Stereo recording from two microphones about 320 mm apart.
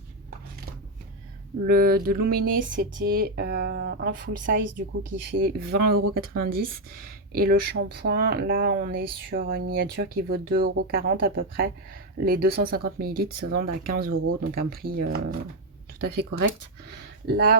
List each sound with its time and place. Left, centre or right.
1.6 s speech: right
14.1 s speech: right
14.5 s speech: right